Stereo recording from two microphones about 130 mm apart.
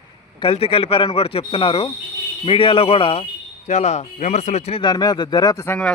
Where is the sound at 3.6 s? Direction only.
60° left (ahead or behind).